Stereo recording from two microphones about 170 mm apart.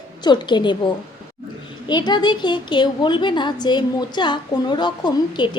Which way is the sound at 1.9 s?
25° left (ahead or behind).